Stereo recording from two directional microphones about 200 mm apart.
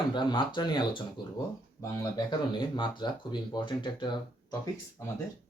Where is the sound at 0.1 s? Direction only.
20° left (ahead or behind).